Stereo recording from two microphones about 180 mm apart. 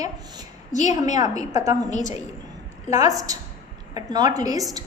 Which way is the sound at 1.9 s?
40° left (ahead or behind).